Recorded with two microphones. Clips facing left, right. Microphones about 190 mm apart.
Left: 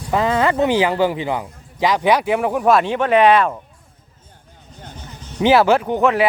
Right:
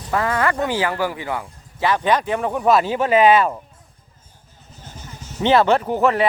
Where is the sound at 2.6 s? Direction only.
Centre (ahead or behind).